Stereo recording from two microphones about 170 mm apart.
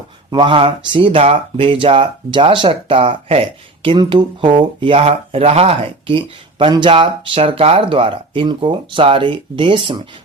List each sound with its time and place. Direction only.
0.3 s speech: 30° right (ahead or behind)